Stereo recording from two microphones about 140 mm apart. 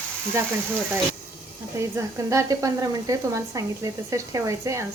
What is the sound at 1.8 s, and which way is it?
Speech, 20° right (ahead or behind).